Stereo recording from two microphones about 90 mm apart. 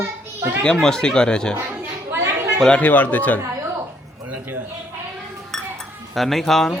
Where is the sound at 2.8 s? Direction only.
20° left (ahead or behind).